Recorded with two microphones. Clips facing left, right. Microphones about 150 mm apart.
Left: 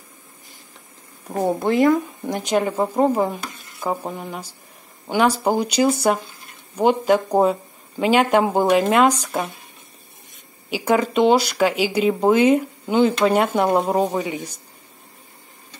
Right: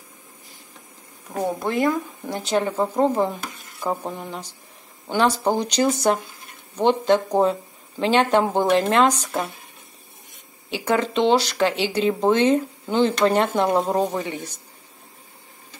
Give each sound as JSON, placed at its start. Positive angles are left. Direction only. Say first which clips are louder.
{"t": 1.4, "sound": "speech", "louder": "left 4 dB", "side_deg": 25}
{"t": 10.7, "sound": "speech", "louder": "left 3 dB", "side_deg": 10}